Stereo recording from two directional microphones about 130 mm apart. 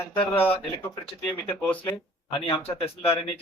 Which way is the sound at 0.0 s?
15° left (ahead or behind).